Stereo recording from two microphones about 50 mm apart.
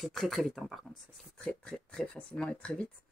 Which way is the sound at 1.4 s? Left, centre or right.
Centre.